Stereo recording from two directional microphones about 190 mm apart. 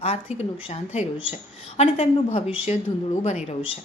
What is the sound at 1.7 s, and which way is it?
A woman's voice, 35° left (ahead or behind).